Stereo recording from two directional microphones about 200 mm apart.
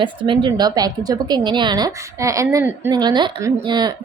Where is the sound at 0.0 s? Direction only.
25° right (ahead or behind).